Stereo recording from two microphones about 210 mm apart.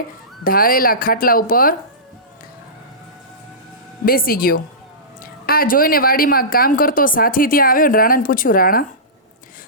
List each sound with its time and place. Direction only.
0.4 s speech: 45° left (ahead or behind)
4.0 s speech: 45° left (ahead or behind)